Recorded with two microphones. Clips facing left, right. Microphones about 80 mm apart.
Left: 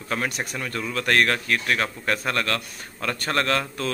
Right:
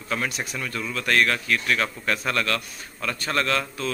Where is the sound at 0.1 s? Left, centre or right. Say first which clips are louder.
Left 1 dB; left.